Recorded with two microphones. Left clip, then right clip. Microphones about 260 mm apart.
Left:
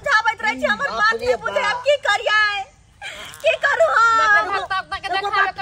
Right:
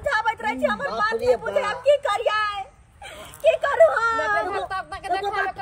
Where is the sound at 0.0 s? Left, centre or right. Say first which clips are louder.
Left 5 dB; centre.